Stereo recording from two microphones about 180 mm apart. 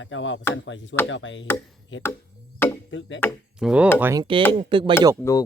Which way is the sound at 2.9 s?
90° left.